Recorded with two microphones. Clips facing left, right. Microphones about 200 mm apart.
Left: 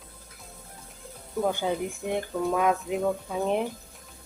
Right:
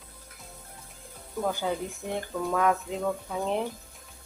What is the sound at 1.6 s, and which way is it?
Speech, 20° left (ahead or behind).